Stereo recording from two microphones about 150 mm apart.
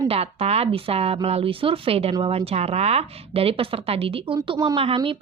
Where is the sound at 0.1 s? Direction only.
45° right (ahead or behind).